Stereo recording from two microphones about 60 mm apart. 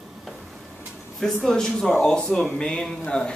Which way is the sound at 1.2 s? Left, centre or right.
Centre.